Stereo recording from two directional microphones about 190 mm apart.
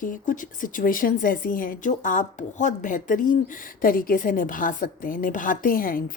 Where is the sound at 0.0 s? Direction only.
45° left (ahead or behind).